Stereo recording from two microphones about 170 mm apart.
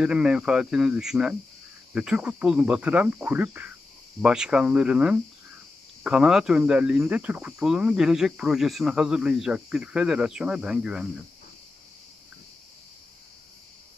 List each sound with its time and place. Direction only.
0.0 s speech: 5° right (ahead or behind)
2.0 s cricket: 5° right (ahead or behind)
4.2 s speech: 5° right (ahead or behind)